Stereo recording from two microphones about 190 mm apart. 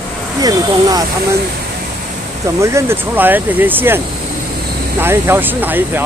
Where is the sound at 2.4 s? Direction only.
15° right (ahead or behind).